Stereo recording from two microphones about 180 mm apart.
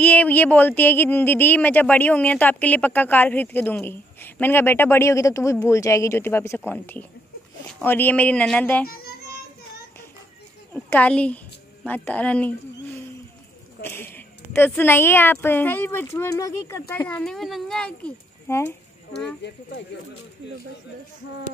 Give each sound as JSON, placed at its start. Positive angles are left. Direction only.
{"t": 0.0, "sound": "speech", "side_deg": 10}
{"t": 8.8, "sound": "music", "side_deg": 55}
{"t": 10.7, "sound": "speech", "side_deg": 10}
{"t": 13.8, "sound": "speech", "side_deg": 10}